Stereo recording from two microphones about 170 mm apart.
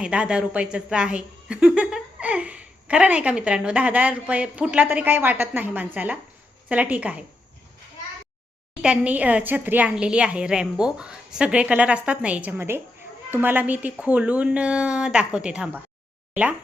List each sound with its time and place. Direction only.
0.0 s a woman's voice: 5° right (ahead or behind)
8.8 s a woman's voice: 5° right (ahead or behind)